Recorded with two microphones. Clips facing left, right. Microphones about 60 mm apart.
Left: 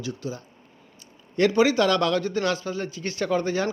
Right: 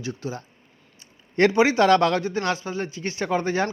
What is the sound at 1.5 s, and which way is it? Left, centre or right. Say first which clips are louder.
Speech: right 3 dB; right.